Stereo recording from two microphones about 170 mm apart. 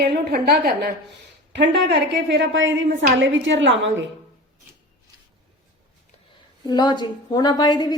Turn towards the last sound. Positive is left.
turn(degrees=25)  # may be behind; listen again after turning